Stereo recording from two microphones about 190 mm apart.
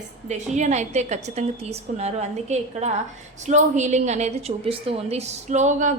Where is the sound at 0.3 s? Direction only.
40° right (ahead or behind).